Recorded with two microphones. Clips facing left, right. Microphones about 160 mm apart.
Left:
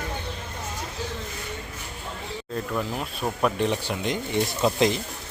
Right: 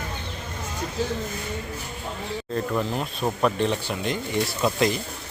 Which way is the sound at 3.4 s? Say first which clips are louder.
Even; 15° left (ahead or behind).